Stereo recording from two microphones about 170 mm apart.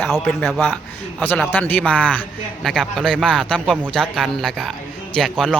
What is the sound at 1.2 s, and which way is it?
A man's voice, 10° left (ahead or behind).